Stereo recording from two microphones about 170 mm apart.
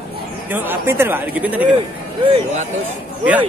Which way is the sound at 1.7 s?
30° right (ahead or behind).